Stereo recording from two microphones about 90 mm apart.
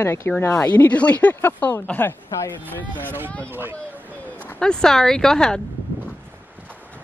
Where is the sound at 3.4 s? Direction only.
25° right (ahead or behind).